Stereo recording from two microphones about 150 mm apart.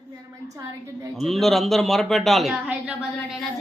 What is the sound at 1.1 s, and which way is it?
A man's voice, centre (ahead or behind).